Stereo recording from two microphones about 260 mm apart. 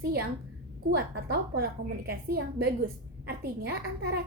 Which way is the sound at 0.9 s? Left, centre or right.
Right.